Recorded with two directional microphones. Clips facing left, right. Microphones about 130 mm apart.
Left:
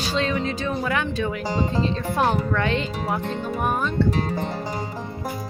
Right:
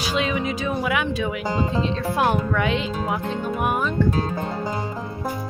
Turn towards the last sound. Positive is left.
turn(degrees=-5)  # may be behind; listen again after turning